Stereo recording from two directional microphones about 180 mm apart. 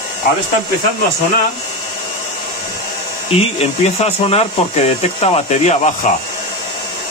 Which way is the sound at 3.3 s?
35° left (ahead or behind).